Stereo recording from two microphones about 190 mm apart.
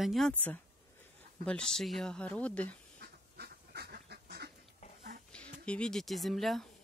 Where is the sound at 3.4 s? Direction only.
55° right (ahead or behind).